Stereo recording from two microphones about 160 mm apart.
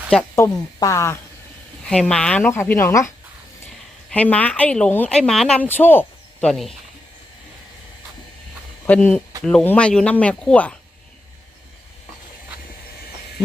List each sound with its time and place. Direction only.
0.3 s speech: 20° left (ahead or behind)
1.9 s speech: 5° left (ahead or behind)
4.1 s speech: 10° left (ahead or behind)
6.5 s speech: centre (ahead or behind)
8.9 s speech: 10° left (ahead or behind)